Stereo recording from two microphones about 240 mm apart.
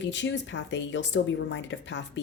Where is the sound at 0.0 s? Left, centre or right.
Left.